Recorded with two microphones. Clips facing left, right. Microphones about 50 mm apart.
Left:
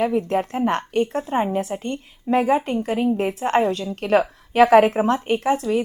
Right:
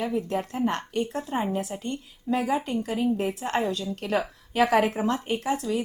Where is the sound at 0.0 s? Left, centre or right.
Left.